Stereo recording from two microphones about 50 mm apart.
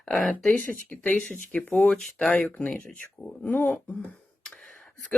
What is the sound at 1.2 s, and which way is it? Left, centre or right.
Speech, left.